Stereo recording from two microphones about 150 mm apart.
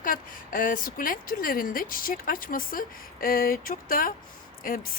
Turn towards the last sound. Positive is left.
turn(degrees=70)  # may be behind; listen again after turning